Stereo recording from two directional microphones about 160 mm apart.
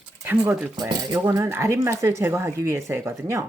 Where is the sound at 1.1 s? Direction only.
15° right (ahead or behind).